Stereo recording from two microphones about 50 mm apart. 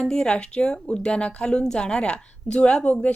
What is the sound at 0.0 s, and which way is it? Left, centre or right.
A woman's voice, centre.